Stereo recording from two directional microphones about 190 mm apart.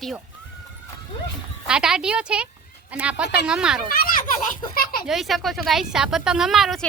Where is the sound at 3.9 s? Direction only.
50° left (ahead or behind).